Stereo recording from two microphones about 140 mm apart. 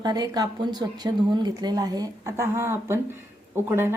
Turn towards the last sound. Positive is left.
turn(degrees=-15)  # may be behind; listen again after turning